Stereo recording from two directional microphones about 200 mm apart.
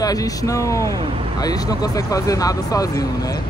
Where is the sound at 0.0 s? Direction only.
20° left (ahead or behind).